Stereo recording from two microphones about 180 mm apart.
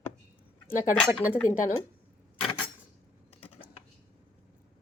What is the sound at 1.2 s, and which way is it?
Speech, 10° left (ahead or behind).